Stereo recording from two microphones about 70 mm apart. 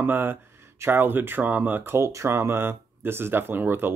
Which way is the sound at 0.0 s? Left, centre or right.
Right.